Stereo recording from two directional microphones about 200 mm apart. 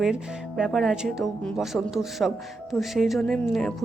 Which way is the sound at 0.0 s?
Centre (ahead or behind).